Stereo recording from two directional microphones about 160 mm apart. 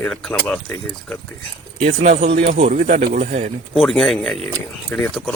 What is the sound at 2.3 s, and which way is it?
Speech, 85° right.